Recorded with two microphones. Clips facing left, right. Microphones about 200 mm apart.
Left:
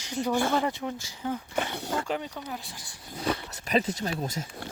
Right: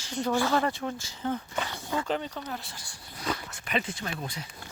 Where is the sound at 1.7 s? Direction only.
70° left (ahead or behind).